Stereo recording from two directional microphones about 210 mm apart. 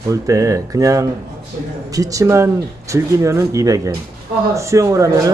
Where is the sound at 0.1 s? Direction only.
15° right (ahead or behind).